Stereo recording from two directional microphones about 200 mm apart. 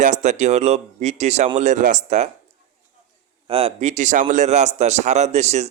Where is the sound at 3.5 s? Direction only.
30° right (ahead or behind).